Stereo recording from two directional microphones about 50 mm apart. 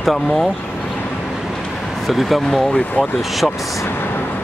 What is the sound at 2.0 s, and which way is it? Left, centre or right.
Speech, centre.